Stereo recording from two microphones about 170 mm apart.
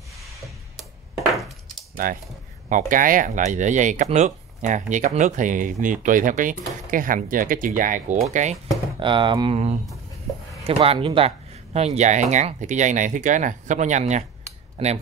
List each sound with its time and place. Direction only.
1.3 s a sound: centre (ahead or behind)
2.7 s speech: 55° right (ahead or behind)
9.0 s speech: 30° right (ahead or behind)
10.6 s speech: 35° right (ahead or behind)
14.8 s speech: 35° right (ahead or behind)